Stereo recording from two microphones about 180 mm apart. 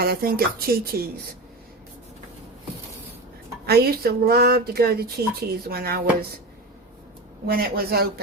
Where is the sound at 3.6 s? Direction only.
60° right (ahead or behind).